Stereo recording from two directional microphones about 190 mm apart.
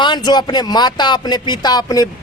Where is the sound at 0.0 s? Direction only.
20° left (ahead or behind).